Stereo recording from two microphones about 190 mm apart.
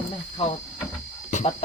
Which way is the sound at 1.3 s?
40° left (ahead or behind).